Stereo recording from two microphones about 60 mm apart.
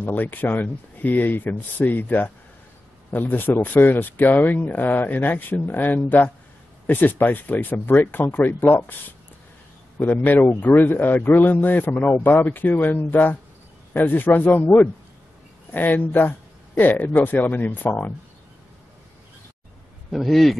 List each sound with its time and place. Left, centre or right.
0.0 s speech: left
9.9 s speech: left
12.3 s speech: left
12.5 s speech: left
20.1 s a man's voice: centre